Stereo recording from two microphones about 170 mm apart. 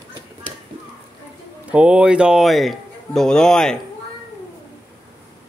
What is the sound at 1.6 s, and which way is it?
Speech, 5° right (ahead or behind).